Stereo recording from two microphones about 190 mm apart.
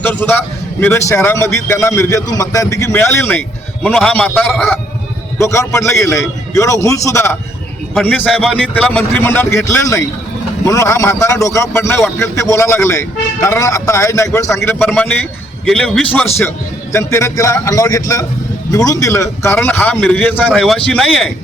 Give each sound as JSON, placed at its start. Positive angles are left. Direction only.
{"t": 0.0, "sound": "a man's voice", "side_deg": 10}
{"t": 5.4, "sound": "a man's voice", "side_deg": 15}
{"t": 16.9, "sound": "a man's voice", "side_deg": 15}